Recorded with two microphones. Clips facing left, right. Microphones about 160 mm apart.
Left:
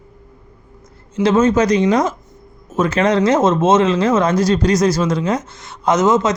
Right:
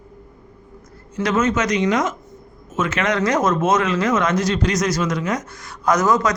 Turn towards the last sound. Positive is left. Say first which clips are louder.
# left 3 dB
turn(degrees=25)  # may be behind; listen again after turning